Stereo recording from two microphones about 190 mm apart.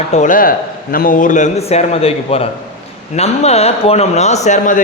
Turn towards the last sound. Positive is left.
turn(degrees=40)  # may be behind; listen again after turning